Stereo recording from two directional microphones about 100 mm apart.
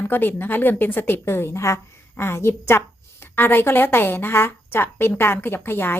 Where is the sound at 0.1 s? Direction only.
20° left (ahead or behind).